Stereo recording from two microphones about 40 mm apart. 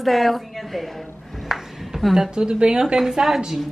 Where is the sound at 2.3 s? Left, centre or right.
Right.